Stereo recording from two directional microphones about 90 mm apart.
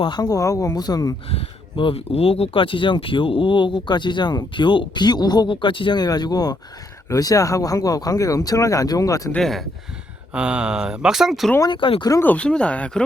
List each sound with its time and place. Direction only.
0.2 s speech: 40° left (ahead or behind)
1.3 s speech: 80° left
6.0 s speech: 50° left (ahead or behind)
9.3 s speech: 5° left (ahead or behind)
10.3 s speech: 10° right (ahead or behind)
11.6 s speech: 65° left (ahead or behind)
12.2 s speech: 15° left (ahead or behind)